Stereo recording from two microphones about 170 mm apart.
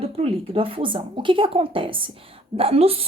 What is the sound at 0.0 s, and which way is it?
A woman's voice, 35° right (ahead or behind).